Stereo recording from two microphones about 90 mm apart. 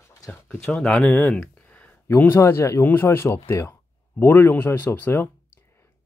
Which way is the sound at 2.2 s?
25° left (ahead or behind).